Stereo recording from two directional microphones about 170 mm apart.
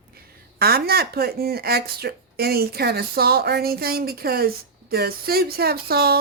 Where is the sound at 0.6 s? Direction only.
65° right (ahead or behind).